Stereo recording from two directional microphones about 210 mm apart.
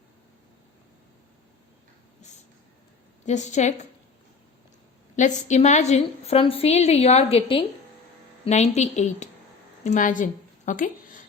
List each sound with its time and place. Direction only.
3.2 s a woman's voice: 35° left (ahead or behind)
5.1 s a woman's voice: 35° left (ahead or behind)
10.7 s a sound: 40° left (ahead or behind)